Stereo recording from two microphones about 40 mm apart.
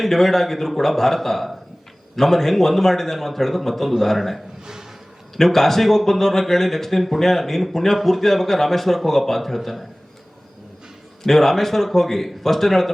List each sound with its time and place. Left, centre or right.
0.0 s speech: centre
4.6 s a sound: centre
5.4 s speech: centre
11.2 s speech: centre